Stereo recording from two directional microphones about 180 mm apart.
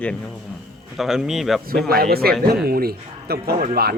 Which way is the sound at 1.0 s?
5° right (ahead or behind).